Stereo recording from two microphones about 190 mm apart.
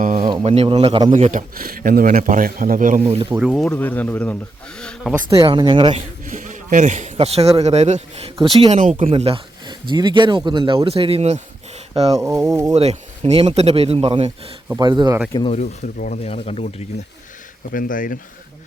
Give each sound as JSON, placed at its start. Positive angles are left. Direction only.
{"t": 0.0, "sound": "speech", "side_deg": -45}
{"t": 0.4, "sound": "speech", "side_deg": -30}
{"t": 1.1, "sound": "speech", "side_deg": -40}
{"t": 3.2, "sound": "speech", "side_deg": -5}
{"t": 5.3, "sound": "speech", "side_deg": -25}
{"t": 6.3, "sound": "speech", "side_deg": -40}
{"t": 12.1, "sound": "speech", "side_deg": -15}
{"t": 12.7, "sound": "a man's voice", "side_deg": -35}
{"t": 15.3, "sound": "speech", "side_deg": 20}
{"t": 15.5, "sound": "speech", "side_deg": 40}
{"t": 17.7, "sound": "speech", "side_deg": 45}